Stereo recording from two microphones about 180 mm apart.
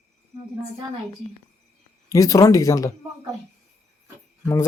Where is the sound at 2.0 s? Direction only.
20° left (ahead or behind).